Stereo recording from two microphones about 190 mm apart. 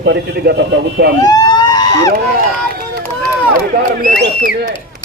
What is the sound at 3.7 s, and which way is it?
Speech, 55° right (ahead or behind).